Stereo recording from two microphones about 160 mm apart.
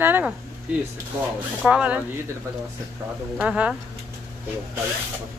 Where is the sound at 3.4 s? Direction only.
5° right (ahead or behind).